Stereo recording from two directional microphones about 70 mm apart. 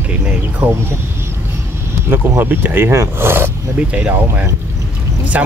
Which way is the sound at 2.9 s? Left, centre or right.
Right.